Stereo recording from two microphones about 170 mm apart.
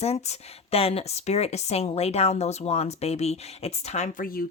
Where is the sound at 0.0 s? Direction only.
40° left (ahead or behind).